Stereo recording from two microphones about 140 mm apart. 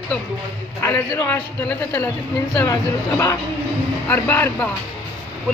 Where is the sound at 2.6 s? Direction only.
20° left (ahead or behind).